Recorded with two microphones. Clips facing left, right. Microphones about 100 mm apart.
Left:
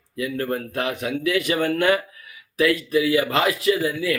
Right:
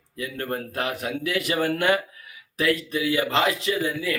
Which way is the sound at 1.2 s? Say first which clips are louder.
Left 6 dB; 40° right (ahead or behind).